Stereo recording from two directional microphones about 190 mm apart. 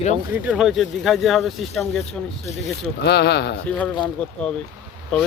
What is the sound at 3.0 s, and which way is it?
Speech, 60° left (ahead or behind).